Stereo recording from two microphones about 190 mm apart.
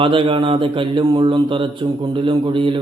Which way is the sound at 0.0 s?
30° right (ahead or behind).